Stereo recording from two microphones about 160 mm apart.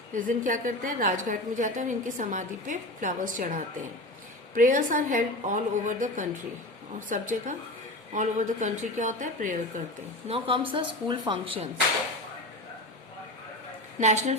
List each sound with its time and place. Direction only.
0.1 s a woman's voice: 55° right (ahead or behind)
10.2 s speech: 35° right (ahead or behind)
14.0 s a woman's voice: 45° right (ahead or behind)